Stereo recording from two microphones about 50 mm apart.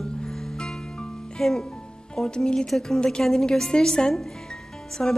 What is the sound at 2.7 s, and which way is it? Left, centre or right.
Speech, centre.